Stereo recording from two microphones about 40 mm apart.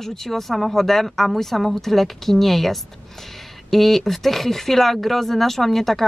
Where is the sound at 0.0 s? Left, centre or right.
Centre.